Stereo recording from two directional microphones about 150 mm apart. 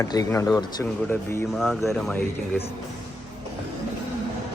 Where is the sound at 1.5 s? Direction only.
Centre (ahead or behind).